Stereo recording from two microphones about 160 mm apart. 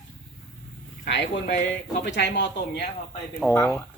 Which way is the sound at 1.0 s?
90° left.